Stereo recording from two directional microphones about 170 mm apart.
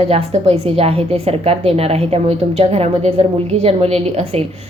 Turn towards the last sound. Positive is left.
turn(degrees=-35)  # may be behind; listen again after turning